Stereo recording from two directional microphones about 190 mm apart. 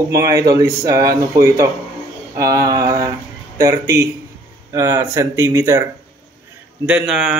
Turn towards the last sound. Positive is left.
turn(degrees=-5)  # may be behind; listen again after turning